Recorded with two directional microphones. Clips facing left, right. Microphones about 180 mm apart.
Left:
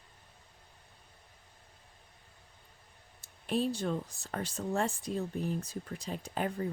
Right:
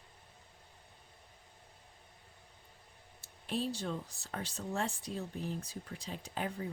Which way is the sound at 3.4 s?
50° left (ahead or behind).